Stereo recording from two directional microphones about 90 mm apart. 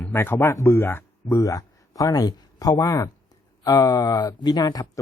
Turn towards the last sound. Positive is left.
turn(degrees=45)  # may be behind; listen again after turning